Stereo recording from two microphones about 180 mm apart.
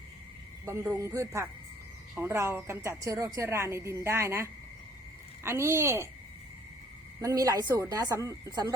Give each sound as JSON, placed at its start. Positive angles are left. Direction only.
{"t": 0.6, "sound": "a woman's voice", "side_deg": -15}
{"t": 7.2, "sound": "a woman's voice", "side_deg": -20}